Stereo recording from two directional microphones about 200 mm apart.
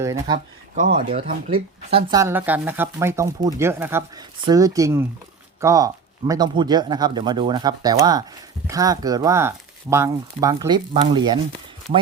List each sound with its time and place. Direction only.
0.0 s speech: 15° right (ahead or behind)
0.8 s speech: 40° right (ahead or behind)
1.9 s speech: 30° right (ahead or behind)
2.1 s speech: 10° right (ahead or behind)